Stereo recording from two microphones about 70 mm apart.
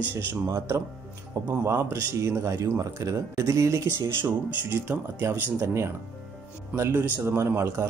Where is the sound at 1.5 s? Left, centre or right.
Right.